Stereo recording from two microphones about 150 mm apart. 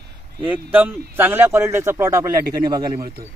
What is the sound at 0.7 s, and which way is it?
A man's voice, 10° right (ahead or behind).